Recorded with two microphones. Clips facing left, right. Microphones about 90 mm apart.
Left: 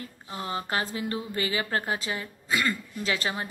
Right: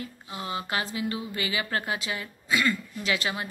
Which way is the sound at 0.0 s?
35° left (ahead or behind).